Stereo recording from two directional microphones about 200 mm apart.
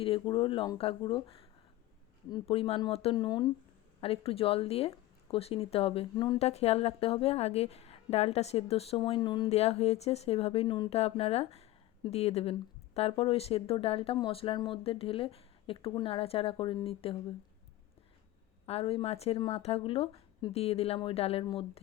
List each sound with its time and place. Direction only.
0.0 s a woman's voice: 25° left (ahead or behind)
6.4 s a woman's voice: 30° left (ahead or behind)
18.6 s a woman's voice: 30° left (ahead or behind)